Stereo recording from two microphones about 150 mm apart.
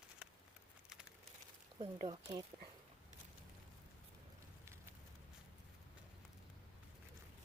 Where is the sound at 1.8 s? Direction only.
30° right (ahead or behind).